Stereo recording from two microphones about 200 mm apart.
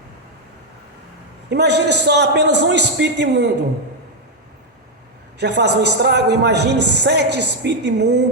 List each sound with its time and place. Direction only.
1.5 s a man's voice: 55° right (ahead or behind)
5.4 s a man's voice: 60° right (ahead or behind)